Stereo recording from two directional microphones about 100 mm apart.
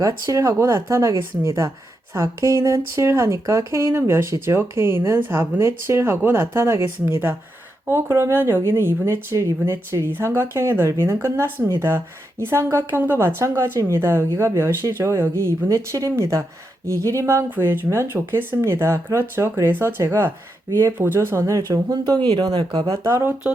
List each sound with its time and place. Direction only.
0.0 s speech: 35° right (ahead or behind)
22.9 s speech: 30° right (ahead or behind)